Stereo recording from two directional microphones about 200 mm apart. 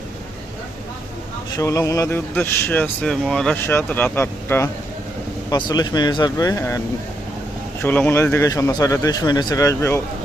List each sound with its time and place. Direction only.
1.5 s speech: 15° left (ahead or behind)